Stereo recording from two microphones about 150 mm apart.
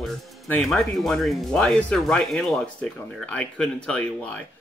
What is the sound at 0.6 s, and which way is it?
Speech, centre (ahead or behind).